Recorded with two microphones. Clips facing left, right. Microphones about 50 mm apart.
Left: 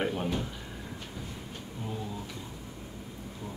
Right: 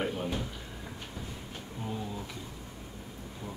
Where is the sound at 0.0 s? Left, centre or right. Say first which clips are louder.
Left 2 dB; centre.